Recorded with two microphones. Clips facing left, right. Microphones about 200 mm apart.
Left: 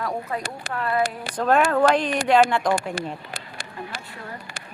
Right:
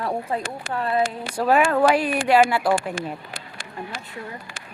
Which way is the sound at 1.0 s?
35° left (ahead or behind).